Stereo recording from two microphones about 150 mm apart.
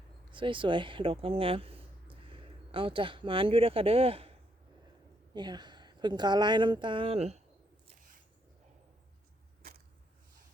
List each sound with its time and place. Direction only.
0.3 s speech: 35° right (ahead or behind)
5.3 s a woman's voice: 30° right (ahead or behind); by 7.4 s 45° right (ahead or behind)